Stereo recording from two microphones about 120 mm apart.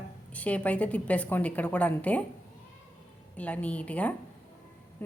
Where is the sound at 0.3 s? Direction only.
10° left (ahead or behind).